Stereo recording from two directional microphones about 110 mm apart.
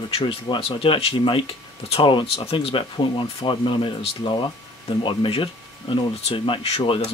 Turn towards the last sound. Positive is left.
turn(degrees=60)  # may be behind; listen again after turning